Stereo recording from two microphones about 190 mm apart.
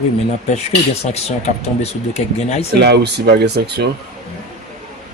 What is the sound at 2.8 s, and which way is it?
A man's voice, 60° right (ahead or behind).